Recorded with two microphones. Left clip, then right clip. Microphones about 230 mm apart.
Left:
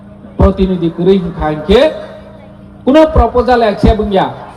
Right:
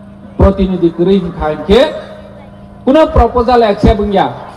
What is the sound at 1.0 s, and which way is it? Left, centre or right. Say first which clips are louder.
Speech: left 1 dB; left.